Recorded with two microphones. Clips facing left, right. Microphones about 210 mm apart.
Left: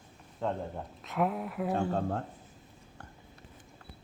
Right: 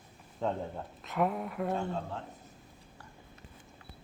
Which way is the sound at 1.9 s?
50° left (ahead or behind).